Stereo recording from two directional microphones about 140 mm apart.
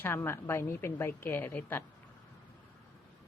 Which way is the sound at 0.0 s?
15° left (ahead or behind).